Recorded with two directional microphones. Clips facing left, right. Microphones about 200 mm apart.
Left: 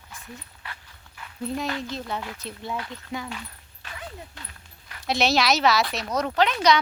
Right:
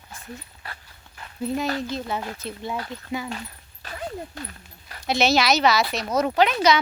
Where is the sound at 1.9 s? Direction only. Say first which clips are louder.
Right 3 dB; 5° right (ahead or behind).